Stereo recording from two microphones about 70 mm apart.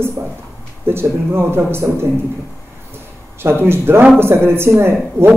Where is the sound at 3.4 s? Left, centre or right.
Right.